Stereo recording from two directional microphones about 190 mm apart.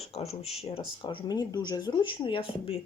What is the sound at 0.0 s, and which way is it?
Speech, 35° left (ahead or behind).